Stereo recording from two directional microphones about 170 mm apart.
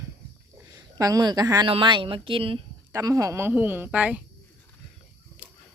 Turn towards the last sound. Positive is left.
turn(degrees=-10)  # may be behind; listen again after turning